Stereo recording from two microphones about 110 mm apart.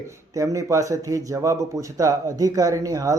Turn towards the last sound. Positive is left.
turn(degrees=-30)  # may be behind; listen again after turning